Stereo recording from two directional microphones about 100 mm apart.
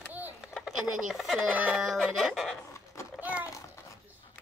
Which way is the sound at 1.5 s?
15° right (ahead or behind).